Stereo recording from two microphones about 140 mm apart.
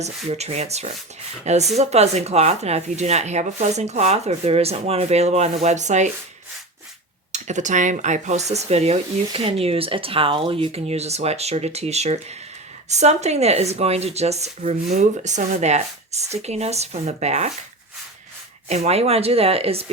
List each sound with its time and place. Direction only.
0.0 s speech: 50° right (ahead or behind)
7.3 s speech: 60° right (ahead or behind)
18.7 s speech: 50° right (ahead or behind)